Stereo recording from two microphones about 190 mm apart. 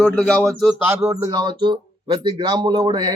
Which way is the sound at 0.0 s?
5° left (ahead or behind).